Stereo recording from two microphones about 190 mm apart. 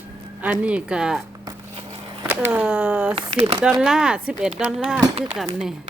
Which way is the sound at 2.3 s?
10° right (ahead or behind).